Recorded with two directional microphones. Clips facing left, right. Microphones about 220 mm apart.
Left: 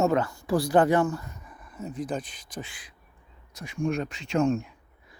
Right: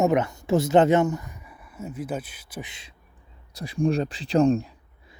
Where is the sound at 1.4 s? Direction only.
10° right (ahead or behind).